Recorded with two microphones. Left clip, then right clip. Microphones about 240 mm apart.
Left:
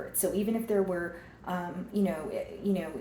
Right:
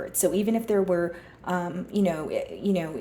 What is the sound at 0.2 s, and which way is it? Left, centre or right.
A woman's voice, right.